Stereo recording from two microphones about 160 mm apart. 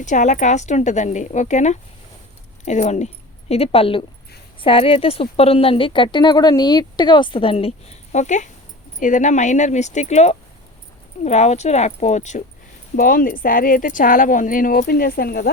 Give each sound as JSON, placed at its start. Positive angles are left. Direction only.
{"t": 0.0, "sound": "a woman's voice", "side_deg": 50}
{"t": 13.0, "sound": "speech", "side_deg": 60}